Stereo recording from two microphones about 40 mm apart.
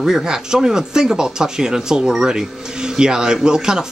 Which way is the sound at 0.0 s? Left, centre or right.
Centre.